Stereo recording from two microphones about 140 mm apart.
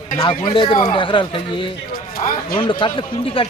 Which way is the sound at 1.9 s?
90° left.